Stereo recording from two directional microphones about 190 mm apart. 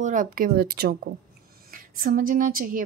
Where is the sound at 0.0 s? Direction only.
40° right (ahead or behind).